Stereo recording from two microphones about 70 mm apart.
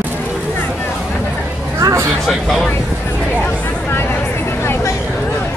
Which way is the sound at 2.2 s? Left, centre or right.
Centre.